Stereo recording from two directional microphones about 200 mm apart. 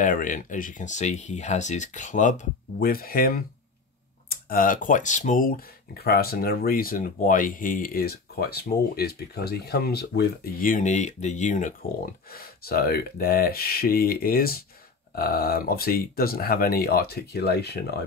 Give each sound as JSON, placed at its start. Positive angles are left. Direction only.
{"t": 0.0, "sound": "speech", "side_deg": 40}
{"t": 12.3, "sound": "speech", "side_deg": 50}